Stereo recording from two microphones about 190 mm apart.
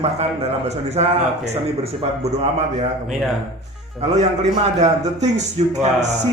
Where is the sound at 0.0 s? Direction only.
30° right (ahead or behind).